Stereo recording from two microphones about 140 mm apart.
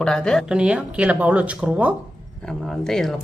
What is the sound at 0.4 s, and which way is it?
Speech, 5° right (ahead or behind).